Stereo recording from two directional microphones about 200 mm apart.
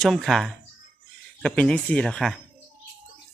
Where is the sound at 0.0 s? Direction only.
Centre (ahead or behind).